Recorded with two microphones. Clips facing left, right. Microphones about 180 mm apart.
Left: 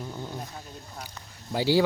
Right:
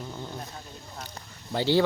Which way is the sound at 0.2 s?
10° left (ahead or behind).